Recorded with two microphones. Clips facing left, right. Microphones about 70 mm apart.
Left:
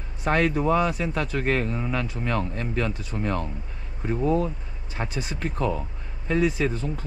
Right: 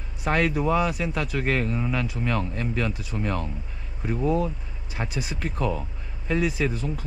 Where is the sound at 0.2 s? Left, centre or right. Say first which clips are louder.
Left 1 dB; left.